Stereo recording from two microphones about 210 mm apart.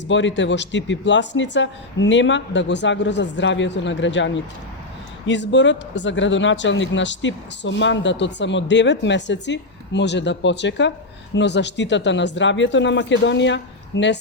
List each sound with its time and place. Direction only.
0.1 s speech: 60° left (ahead or behind)